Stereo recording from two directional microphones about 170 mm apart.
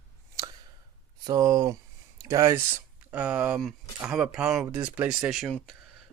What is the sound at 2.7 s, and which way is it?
Speech, 10° right (ahead or behind).